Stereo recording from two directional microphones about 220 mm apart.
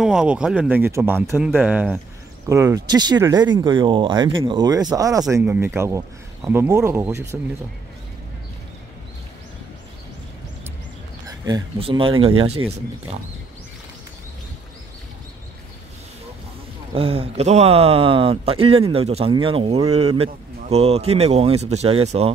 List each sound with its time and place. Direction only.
0.0 s speech: 5° right (ahead or behind)
11.2 s speech: 15° right (ahead or behind)
16.9 s speech: 25° right (ahead or behind)